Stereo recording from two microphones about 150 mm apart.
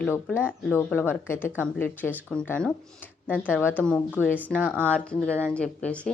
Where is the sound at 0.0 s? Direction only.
10° left (ahead or behind).